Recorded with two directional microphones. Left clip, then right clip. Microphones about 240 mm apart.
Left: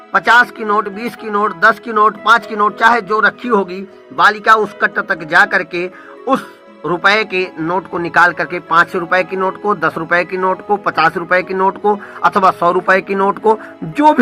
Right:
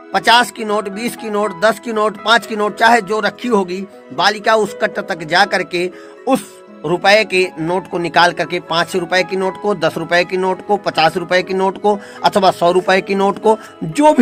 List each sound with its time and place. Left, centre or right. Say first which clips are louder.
0.1 s speech: left 2 dB; right